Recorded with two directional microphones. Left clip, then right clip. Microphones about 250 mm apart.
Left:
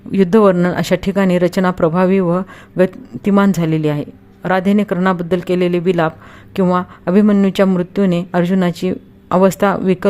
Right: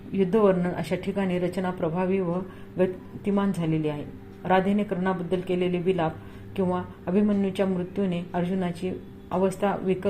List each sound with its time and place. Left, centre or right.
0.1 s speech: left